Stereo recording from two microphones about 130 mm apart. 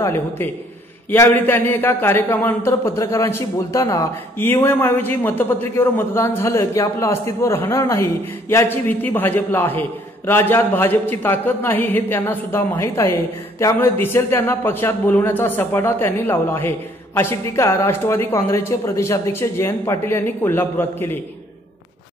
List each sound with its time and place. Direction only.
0.0 s a man's voice: 20° left (ahead or behind)